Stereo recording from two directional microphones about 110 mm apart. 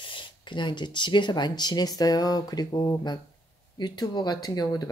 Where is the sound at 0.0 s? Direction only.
50° left (ahead or behind).